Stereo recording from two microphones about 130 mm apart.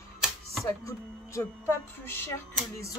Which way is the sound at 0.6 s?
25° left (ahead or behind).